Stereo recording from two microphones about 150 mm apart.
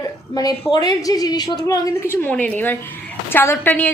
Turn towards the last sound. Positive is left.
turn(degrees=10)  # may be behind; listen again after turning